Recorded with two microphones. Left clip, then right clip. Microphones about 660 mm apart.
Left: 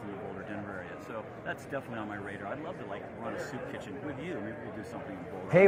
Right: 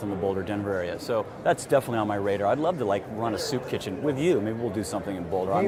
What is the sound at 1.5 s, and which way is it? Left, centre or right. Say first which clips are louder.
Speech: right 16 dB; right.